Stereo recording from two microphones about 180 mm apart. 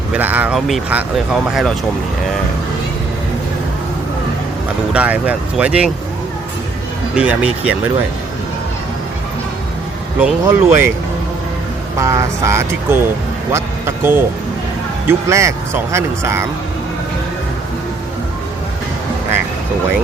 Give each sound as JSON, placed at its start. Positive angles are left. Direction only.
{"t": 0.1, "sound": "speech", "side_deg": -10}
{"t": 4.9, "sound": "speech", "side_deg": -5}
{"t": 7.2, "sound": "speech", "side_deg": -5}
{"t": 10.2, "sound": "speech", "side_deg": -10}
{"t": 11.9, "sound": "speech", "side_deg": -15}